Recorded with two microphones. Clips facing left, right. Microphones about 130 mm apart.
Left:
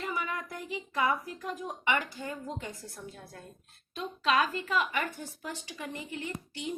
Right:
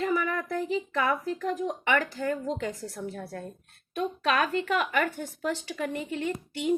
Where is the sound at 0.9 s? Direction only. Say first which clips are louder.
Right 3 dB; 60° right (ahead or behind).